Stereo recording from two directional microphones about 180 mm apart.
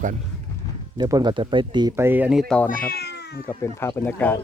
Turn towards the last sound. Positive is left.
turn(degrees=10)  # may be behind; listen again after turning